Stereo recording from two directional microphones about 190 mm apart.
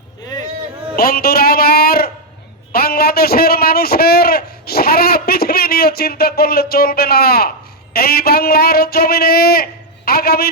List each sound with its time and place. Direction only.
0.9 s a man's voice: 55° left (ahead or behind)